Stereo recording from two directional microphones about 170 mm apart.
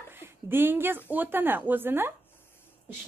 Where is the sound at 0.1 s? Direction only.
15° right (ahead or behind).